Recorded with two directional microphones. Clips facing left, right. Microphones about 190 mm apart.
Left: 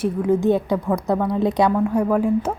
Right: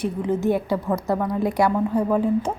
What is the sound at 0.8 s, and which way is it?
Speech, centre (ahead or behind).